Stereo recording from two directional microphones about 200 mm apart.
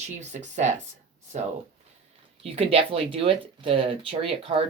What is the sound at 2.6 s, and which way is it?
Speech, 30° right (ahead or behind).